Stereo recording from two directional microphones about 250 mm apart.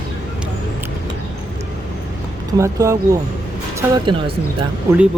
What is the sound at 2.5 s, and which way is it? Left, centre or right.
Speech, centre.